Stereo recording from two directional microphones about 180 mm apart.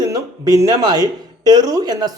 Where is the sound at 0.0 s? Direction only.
20° right (ahead or behind).